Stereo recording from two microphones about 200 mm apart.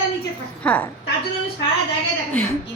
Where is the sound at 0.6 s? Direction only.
5° left (ahead or behind).